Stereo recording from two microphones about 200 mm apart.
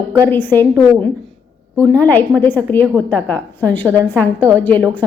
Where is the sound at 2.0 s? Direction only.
10° left (ahead or behind).